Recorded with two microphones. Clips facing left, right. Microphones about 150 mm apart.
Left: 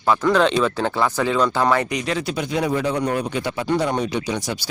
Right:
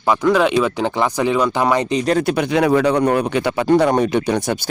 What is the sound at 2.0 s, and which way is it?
Speech, 50° right (ahead or behind).